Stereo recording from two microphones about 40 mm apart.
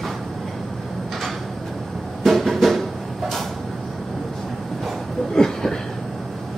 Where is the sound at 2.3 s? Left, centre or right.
Centre.